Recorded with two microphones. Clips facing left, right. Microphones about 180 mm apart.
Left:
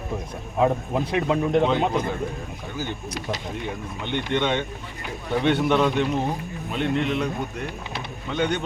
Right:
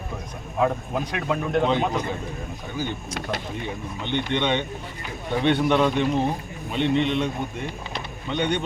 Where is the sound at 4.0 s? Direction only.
5° left (ahead or behind).